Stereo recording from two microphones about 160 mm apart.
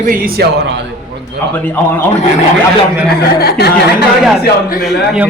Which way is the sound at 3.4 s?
85° left.